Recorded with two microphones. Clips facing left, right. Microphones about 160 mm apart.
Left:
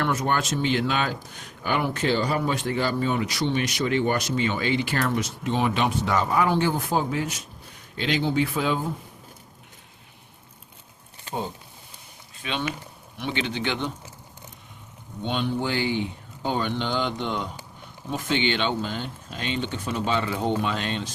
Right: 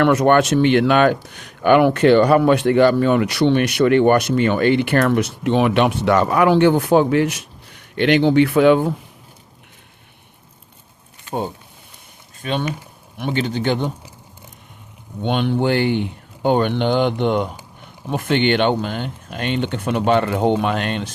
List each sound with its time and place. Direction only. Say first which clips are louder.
0.0 s speech: right 11 dB; 70° right (ahead or behind)
12.4 s speech: right 6 dB; 45° right (ahead or behind)
15.2 s speech: right 7 dB; 65° right (ahead or behind)